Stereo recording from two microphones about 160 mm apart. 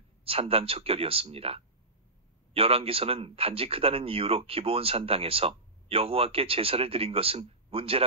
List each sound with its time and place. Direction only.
0.2 s a man's voice: 35° right (ahead or behind)